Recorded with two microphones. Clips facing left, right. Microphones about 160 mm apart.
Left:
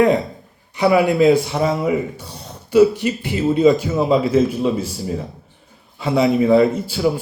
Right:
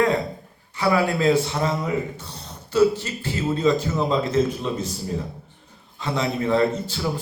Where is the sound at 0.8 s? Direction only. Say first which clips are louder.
Left 7 dB; 15° left (ahead or behind).